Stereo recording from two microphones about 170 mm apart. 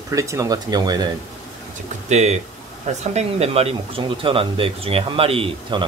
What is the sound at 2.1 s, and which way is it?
Speech, 40° right (ahead or behind).